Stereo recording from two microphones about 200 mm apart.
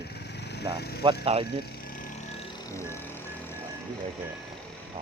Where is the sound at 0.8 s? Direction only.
55° left (ahead or behind).